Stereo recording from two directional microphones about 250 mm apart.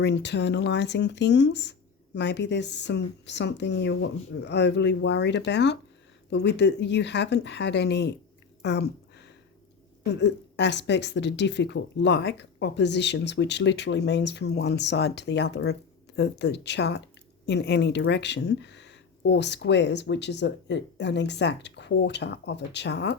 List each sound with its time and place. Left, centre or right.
0.0 s speech: left
8.6 s a sound: left
10.1 s speech: left